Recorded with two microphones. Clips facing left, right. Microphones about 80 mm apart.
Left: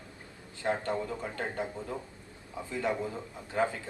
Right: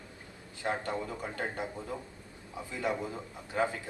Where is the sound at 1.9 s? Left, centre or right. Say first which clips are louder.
Left 1 dB; left.